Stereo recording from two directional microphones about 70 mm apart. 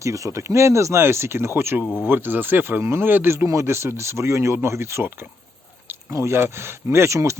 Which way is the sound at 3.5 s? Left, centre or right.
Right.